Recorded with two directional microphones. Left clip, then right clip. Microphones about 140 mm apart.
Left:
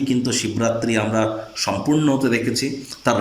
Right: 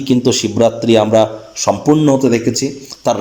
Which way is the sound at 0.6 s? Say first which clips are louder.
Right 10 dB; 60° right (ahead or behind).